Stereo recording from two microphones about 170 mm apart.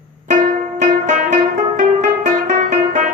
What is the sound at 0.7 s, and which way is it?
Music, 45° right (ahead or behind).